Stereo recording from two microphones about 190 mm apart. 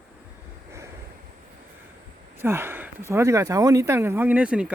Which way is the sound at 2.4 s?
10° right (ahead or behind).